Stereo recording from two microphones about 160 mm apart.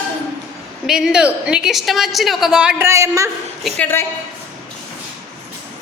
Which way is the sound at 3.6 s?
10° left (ahead or behind).